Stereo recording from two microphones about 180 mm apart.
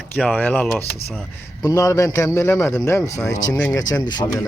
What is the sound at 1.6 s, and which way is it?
Speech, 20° left (ahead or behind).